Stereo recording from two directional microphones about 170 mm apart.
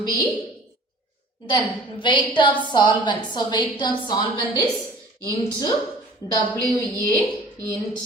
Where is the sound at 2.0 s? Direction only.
25° left (ahead or behind).